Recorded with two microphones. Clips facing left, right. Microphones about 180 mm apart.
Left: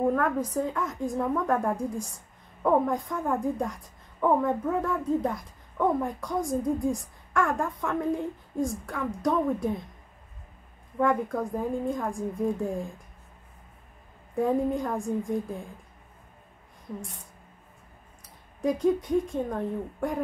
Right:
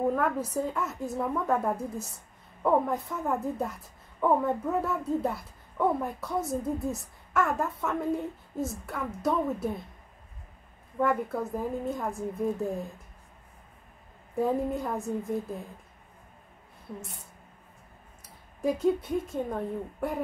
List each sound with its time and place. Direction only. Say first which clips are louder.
0.1 s a woman's voice: left 2 dB; 5° right (ahead or behind)
11.0 s a woman's voice: left 2 dB; 5° right (ahead or behind)
14.3 s a woman's voice: left 2 dB; 5° right (ahead or behind)
18.6 s a woman's voice: left 1 dB; 10° right (ahead or behind)